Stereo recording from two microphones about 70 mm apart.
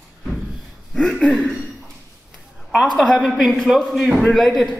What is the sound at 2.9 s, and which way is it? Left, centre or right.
Speech, centre.